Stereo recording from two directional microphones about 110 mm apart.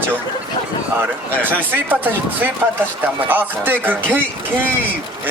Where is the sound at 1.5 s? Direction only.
15° right (ahead or behind).